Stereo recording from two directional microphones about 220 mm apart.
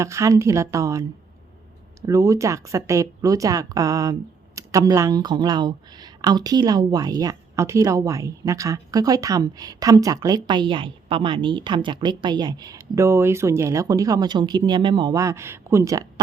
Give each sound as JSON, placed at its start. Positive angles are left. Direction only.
{"t": 0.0, "sound": "speech", "side_deg": -15}